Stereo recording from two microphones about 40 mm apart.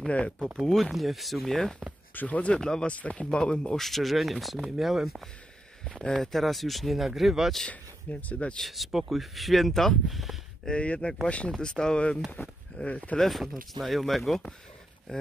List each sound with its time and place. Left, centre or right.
0.6 s speech: centre
2.2 s speech: left
2.6 s speech: centre
2.9 s speech: left
3.7 s speech: centre
7.7 s speech: left
8.5 s speech: centre
10.7 s speech: left
12.4 s speech: left
12.8 s speech: left
13.3 s speech: centre